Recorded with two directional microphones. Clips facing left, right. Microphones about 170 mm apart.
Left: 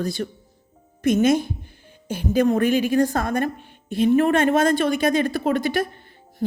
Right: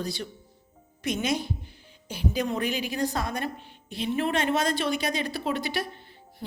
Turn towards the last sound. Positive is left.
turn(degrees=50)  # may be behind; listen again after turning